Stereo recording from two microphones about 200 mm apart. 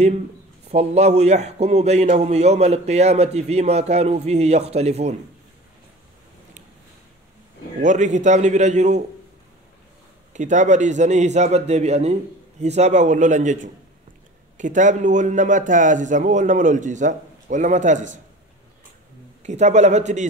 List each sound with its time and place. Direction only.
0.7 s a man's voice: 30° right (ahead or behind)
7.8 s a man's voice: 40° right (ahead or behind)
10.3 s a man's voice: 35° right (ahead or behind)
19.4 s a man's voice: 35° right (ahead or behind)